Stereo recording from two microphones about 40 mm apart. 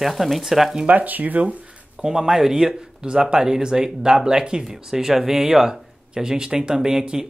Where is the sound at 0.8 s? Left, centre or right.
Right.